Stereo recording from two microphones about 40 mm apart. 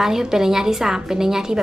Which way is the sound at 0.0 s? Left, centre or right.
Centre.